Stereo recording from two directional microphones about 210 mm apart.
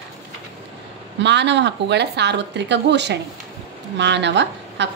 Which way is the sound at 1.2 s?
55° right (ahead or behind).